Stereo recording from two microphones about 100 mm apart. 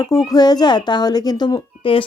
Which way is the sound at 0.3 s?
45° left (ahead or behind).